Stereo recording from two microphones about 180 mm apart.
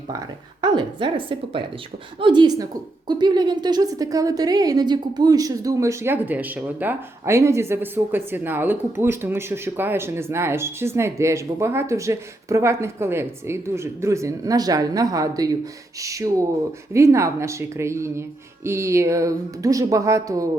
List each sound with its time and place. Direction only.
0.6 s a woman's voice: 25° right (ahead or behind)